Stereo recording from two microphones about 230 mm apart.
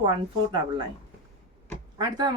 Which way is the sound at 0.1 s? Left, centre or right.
Right.